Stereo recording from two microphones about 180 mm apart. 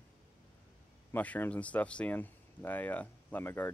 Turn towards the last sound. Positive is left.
turn(degrees=10)  # may be behind; listen again after turning